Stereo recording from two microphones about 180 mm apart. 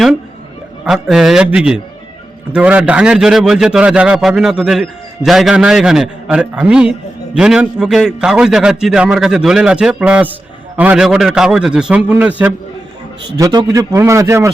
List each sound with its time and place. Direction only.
0.9 s a man's voice: centre (ahead or behind)
13.3 s a man's voice: 20° right (ahead or behind)